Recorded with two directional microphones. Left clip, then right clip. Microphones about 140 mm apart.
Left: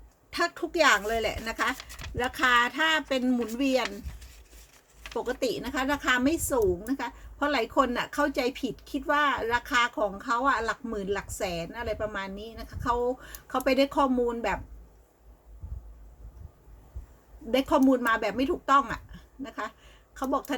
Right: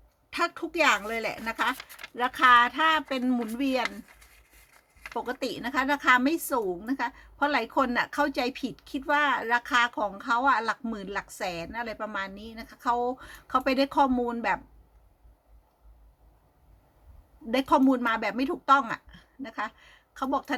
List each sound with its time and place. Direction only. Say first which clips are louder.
0.3 s a woman's voice: even; 40° right (ahead or behind)
5.1 s a woman's voice: left 3 dB; 35° right (ahead or behind)
17.5 s a woman's voice: even; 40° right (ahead or behind)